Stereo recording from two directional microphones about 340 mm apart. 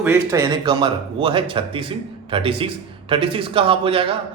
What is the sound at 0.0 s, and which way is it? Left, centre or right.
Speech, centre.